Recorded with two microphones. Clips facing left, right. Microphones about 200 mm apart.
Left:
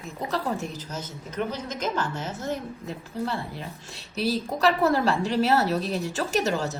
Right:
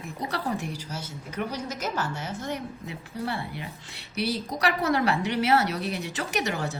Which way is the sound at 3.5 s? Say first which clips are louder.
Left 1 dB; 70° right (ahead or behind).